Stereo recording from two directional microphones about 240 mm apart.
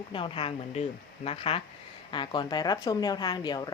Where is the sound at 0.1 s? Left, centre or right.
Left.